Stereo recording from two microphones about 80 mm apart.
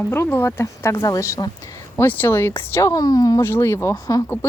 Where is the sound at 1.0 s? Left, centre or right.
Left.